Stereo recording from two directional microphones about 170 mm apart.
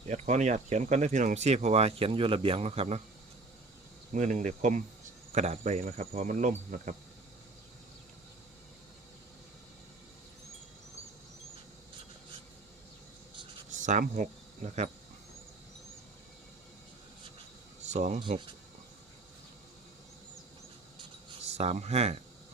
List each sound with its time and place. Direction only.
0.1 s speech: 45° right (ahead or behind)
4.1 s speech: 45° right (ahead or behind)
13.7 s cricket: 45° right (ahead or behind)
17.8 s speech: 45° right (ahead or behind)
18.2 s speech: 25° right (ahead or behind)
21.4 s speech: 40° right (ahead or behind)